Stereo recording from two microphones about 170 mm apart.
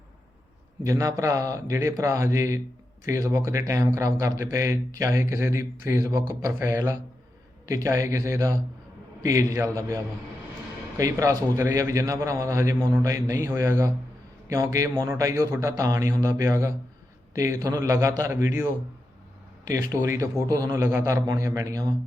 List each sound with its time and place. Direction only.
0.9 s a man's voice: 20° right (ahead or behind)
10.9 s a man's voice: 20° right (ahead or behind)
19.7 s a man's voice: 15° right (ahead or behind)